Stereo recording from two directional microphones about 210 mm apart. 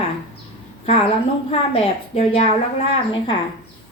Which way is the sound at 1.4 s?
30° left (ahead or behind).